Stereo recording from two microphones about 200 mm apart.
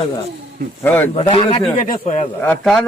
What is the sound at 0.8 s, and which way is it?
Speech, 10° left (ahead or behind).